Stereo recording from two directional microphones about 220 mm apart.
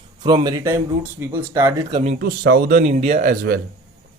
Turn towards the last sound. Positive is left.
turn(degrees=-40)  # may be behind; listen again after turning